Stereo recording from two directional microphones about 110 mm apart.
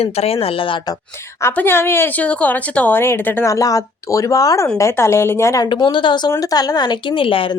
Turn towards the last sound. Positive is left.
turn(degrees=50)  # may be behind; listen again after turning